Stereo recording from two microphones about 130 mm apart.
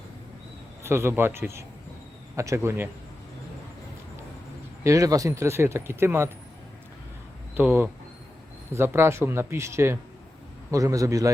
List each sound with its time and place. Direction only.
0.9 s speech: 20° right (ahead or behind)
4.8 s speech: 25° right (ahead or behind)
7.5 s speech: 15° right (ahead or behind)